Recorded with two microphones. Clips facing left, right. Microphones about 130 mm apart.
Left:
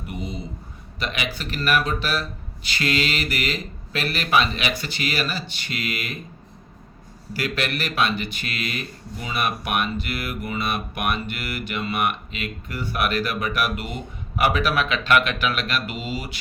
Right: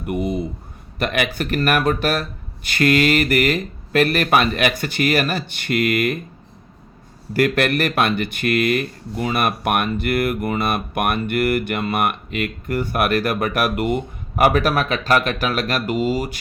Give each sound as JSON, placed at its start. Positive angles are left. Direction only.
{"t": 0.0, "sound": "speech", "side_deg": -55}
{"t": 7.3, "sound": "speech", "side_deg": -55}